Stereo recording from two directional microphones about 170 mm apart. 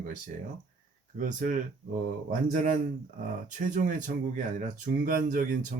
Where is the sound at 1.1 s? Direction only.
55° right (ahead or behind).